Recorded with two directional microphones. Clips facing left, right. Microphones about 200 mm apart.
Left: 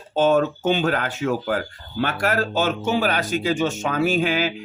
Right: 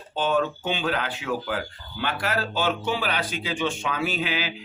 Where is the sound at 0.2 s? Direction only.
45° left (ahead or behind).